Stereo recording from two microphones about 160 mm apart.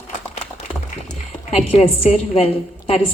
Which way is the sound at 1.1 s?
40° left (ahead or behind).